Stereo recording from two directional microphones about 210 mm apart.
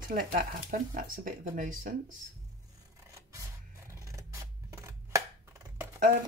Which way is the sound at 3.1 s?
15° right (ahead or behind).